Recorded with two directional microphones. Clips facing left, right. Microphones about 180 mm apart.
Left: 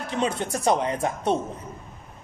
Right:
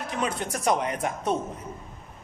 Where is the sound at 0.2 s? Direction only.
30° left (ahead or behind).